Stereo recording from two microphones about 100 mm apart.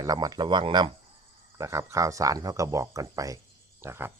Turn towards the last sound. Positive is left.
turn(degrees=-25)  # may be behind; listen again after turning